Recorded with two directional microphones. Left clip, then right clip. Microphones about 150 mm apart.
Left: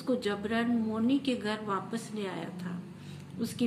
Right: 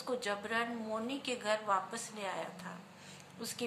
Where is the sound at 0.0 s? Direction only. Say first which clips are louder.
Left 5 dB; 20° right (ahead or behind).